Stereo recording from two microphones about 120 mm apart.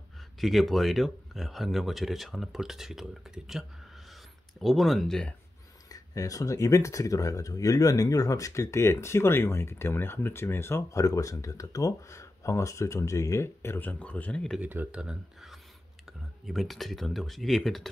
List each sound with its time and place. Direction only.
0.4 s speech: centre (ahead or behind)
5.9 s speech: 30° left (ahead or behind); by 14.6 s 5° left (ahead or behind)
14.6 s speech: 15° right (ahead or behind); by 17.8 s centre (ahead or behind)